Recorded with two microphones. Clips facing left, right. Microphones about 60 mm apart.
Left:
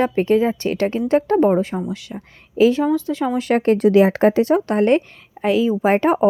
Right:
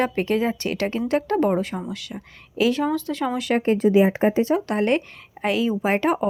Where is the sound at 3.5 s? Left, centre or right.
Left.